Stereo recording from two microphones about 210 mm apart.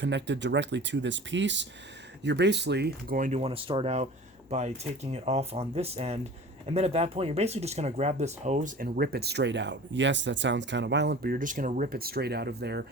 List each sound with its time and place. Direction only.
0.0 s speech: 55° right (ahead or behind)